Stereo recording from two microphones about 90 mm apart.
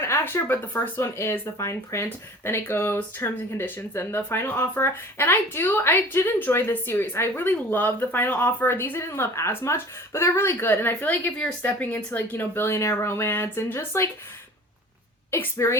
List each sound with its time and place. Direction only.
0.0 s speech: 30° left (ahead or behind)
15.3 s speech: 30° left (ahead or behind)